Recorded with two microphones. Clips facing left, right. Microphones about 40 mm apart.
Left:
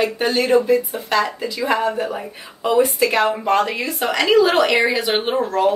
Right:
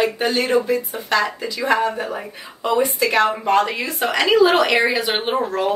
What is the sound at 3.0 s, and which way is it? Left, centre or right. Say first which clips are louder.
A woman's voice: even; centre.